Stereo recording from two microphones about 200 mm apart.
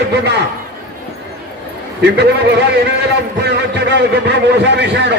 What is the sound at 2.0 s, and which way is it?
A man's voice, 55° right (ahead or behind).